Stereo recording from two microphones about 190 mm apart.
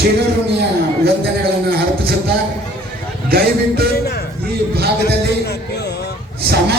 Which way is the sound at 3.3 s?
55° right (ahead or behind).